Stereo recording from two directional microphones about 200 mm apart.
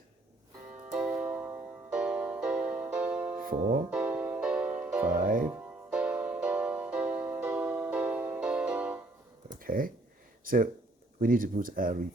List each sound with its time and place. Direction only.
0.9 s music: 5° right (ahead or behind)
3.3 s music: 40° right (ahead or behind)
3.8 s music: 10° right (ahead or behind)
5.0 s speech: 45° right (ahead or behind)
5.5 s music: 5° right (ahead or behind)
9.6 s a sound: 45° right (ahead or behind)
10.4 s speech: 45° right (ahead or behind)